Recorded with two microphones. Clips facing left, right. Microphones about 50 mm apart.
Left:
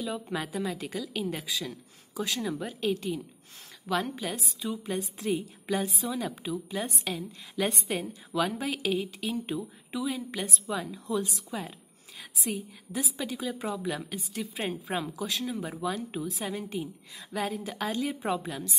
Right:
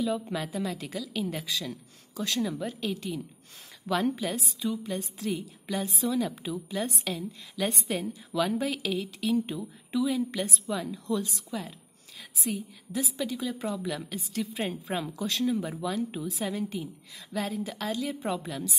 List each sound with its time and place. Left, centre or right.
0.0 s a woman's voice: centre
5.2 s a woman's voice: centre
5.8 s a woman's voice: centre
12.5 s a woman's voice: centre
16.7 s a woman's voice: centre